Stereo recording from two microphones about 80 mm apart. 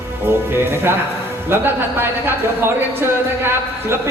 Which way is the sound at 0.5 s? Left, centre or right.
Right.